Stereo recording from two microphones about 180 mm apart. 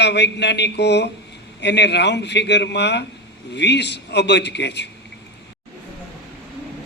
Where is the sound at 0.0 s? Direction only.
70° left (ahead or behind).